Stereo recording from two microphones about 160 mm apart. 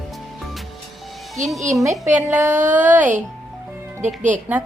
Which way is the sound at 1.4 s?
50° right (ahead or behind).